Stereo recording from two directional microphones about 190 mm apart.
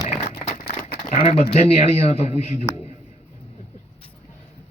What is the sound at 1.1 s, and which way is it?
Speech, 30° left (ahead or behind).